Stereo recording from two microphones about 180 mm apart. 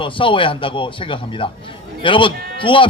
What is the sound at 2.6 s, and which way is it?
Speech, 30° left (ahead or behind).